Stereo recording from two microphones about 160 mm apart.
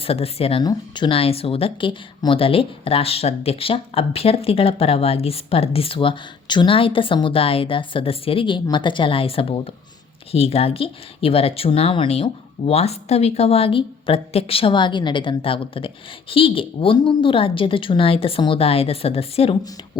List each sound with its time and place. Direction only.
0.0 s speech: 40° left (ahead or behind)
0.6 s speech: 25° left (ahead or behind)